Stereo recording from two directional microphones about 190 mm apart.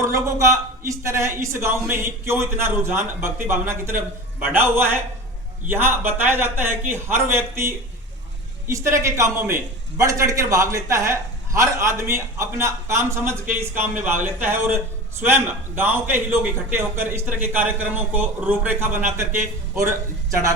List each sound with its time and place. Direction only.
0.0 s a man's voice: 15° right (ahead or behind)